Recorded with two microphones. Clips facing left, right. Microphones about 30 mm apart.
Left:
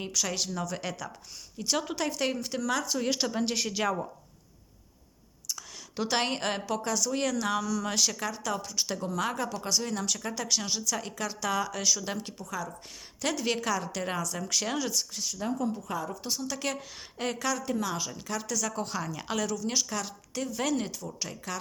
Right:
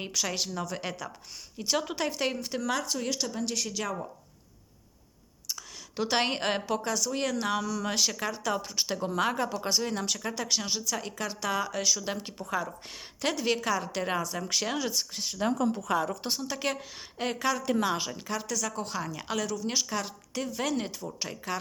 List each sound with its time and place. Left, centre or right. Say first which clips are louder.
0.0 s speech: even; centre
3.1 s speech: left 3 dB; left
5.5 s a woman's voice: right 2 dB; centre
12.4 s speech: right 4 dB; right
13.2 s speech: right 1 dB; centre
15.1 s speech: even; right
15.5 s speech: right 4 dB; right
16.4 s speech: right 1 dB; centre
17.7 s speech: right 3 dB; right
18.1 s speech: right 1 dB; centre
19.5 s speech: even; centre